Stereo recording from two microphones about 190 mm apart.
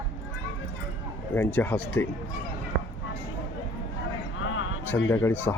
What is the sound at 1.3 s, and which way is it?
Speech, 10° left (ahead or behind).